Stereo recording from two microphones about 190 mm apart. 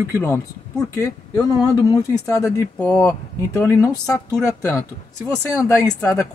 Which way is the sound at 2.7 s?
5° left (ahead or behind).